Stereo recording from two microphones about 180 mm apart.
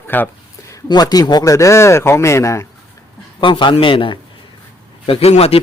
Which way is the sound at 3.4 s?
25° left (ahead or behind).